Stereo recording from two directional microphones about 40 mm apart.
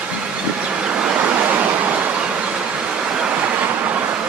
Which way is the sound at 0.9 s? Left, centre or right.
Right.